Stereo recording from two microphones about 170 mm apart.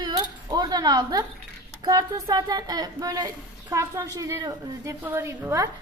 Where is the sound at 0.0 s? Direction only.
25° right (ahead or behind).